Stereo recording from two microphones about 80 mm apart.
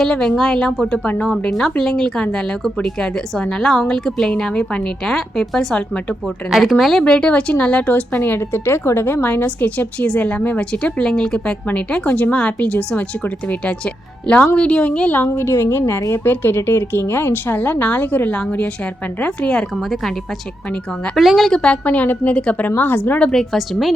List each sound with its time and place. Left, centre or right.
0.0 s a woman's voice: centre
6.2 s speech: centre
7.0 s a woman's voice: centre; by 16.2 s left
16.2 s a woman's voice: left; by 20.1 s centre
21.2 s speech: centre
21.6 s a woman's voice: centre
23.3 s speech: centre